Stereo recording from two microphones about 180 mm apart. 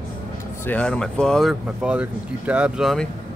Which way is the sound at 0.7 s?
5° left (ahead or behind).